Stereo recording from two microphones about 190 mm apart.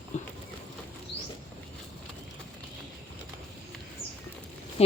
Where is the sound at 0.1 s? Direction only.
40° left (ahead or behind).